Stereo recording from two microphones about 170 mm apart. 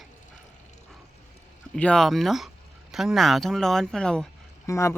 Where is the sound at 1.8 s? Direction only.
5° left (ahead or behind).